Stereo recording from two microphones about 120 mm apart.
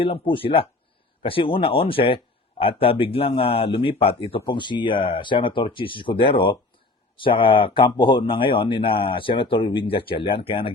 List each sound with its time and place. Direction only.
0.0 s speech: 50° left (ahead or behind)